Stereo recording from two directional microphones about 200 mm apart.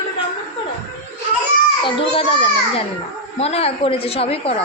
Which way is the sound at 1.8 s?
25° left (ahead or behind).